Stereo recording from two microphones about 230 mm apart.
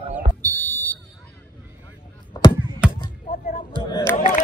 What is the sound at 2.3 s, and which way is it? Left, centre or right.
Chop, centre.